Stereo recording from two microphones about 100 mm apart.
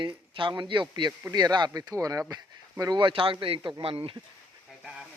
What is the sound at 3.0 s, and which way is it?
Speech, 60° right (ahead or behind).